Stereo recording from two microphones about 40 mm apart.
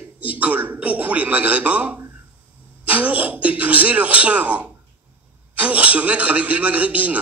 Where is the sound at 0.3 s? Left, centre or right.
Right.